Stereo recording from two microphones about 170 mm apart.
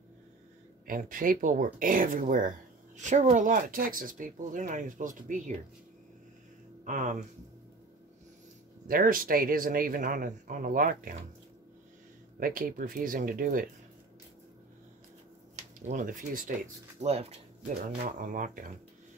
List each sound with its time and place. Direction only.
0.8 s speech: 55° right (ahead or behind)
6.8 s speech: 50° right (ahead or behind)
8.8 s speech: 55° right (ahead or behind)
12.4 s speech: 55° right (ahead or behind)
15.9 s speech: 50° right (ahead or behind)
17.0 s speech: 40° right (ahead or behind)
18.0 s speech: 50° right (ahead or behind)